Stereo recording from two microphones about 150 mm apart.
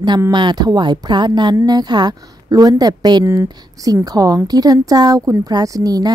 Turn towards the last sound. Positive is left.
turn(degrees=-25)  # may be behind; listen again after turning